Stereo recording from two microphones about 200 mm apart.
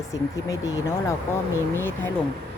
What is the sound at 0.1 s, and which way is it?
A woman's voice, 15° left (ahead or behind).